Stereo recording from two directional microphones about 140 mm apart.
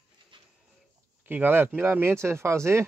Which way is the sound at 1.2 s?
15° right (ahead or behind).